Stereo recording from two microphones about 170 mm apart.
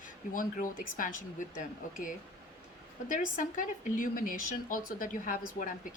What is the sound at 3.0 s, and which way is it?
A woman's voice, 50° left (ahead or behind).